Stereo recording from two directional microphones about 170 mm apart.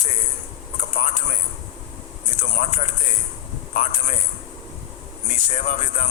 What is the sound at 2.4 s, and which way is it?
Speech, 45° left (ahead or behind).